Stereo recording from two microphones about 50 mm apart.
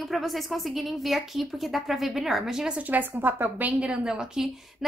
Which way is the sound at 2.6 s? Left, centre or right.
Right.